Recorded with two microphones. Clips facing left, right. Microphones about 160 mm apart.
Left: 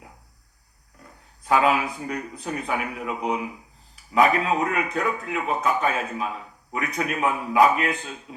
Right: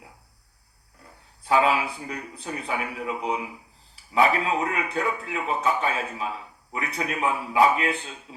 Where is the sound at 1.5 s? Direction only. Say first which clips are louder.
Left 1 dB; 30° right (ahead or behind).